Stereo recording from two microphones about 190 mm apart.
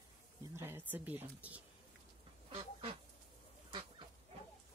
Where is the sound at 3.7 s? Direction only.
25° right (ahead or behind).